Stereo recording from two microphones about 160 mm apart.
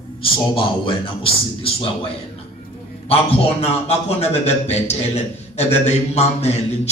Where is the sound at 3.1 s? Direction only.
40° left (ahead or behind).